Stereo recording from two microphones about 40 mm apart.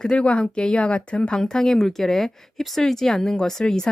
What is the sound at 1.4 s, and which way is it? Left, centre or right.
Speech, centre.